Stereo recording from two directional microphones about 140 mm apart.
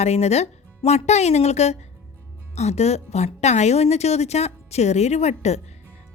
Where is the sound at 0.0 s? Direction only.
50° left (ahead or behind).